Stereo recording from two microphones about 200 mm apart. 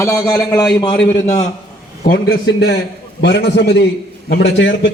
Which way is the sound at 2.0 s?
50° left (ahead or behind).